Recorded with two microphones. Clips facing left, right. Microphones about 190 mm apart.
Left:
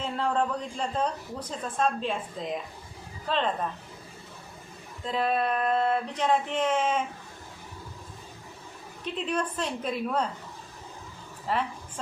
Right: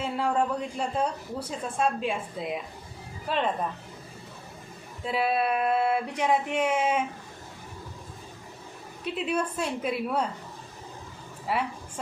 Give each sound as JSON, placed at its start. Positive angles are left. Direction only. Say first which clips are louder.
{"t": 0.0, "sound": "a woman's voice", "louder": "right 1 dB", "side_deg": -10}
{"t": 5.0, "sound": "a woman's voice", "louder": "right 1 dB", "side_deg": -10}
{"t": 9.0, "sound": "a woman's voice", "louder": "right 2 dB", "side_deg": -10}
{"t": 11.5, "sound": "a woman's voice", "louder": "even", "side_deg": -10}